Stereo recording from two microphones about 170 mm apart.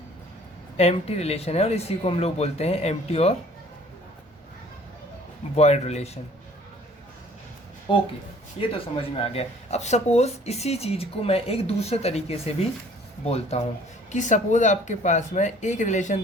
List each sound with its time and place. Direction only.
0.8 s speech: 40° left (ahead or behind)
5.5 s speech: 40° left (ahead or behind)
7.9 s speech: 30° left (ahead or behind); by 16.2 s 45° left (ahead or behind)